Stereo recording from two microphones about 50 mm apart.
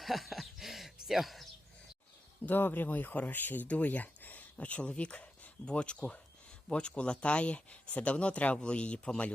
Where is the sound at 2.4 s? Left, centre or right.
Left.